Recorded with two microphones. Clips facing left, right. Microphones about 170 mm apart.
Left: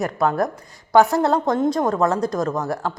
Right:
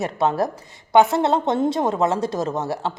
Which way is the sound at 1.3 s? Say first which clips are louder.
Left 1 dB; 25° right (ahead or behind).